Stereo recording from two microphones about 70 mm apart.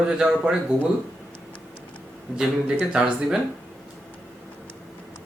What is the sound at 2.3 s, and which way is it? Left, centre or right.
Speech, centre.